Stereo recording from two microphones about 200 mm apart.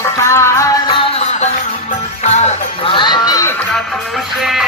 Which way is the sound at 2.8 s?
25° left (ahead or behind).